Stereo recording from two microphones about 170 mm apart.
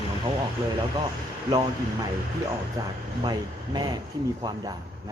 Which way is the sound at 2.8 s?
20° right (ahead or behind).